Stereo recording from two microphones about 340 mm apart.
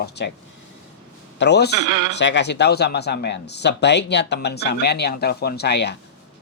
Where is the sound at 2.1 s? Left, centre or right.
Left.